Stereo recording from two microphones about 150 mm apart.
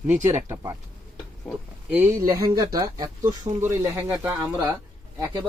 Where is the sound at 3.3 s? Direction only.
50° right (ahead or behind).